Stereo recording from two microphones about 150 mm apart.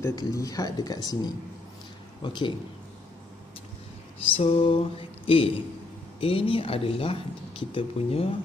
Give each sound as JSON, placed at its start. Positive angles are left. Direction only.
{"t": 0.0, "sound": "speech", "side_deg": 25}
{"t": 4.3, "sound": "speech", "side_deg": 40}